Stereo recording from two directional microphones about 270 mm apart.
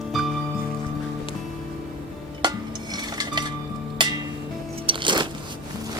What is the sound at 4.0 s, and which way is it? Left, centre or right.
Music, centre.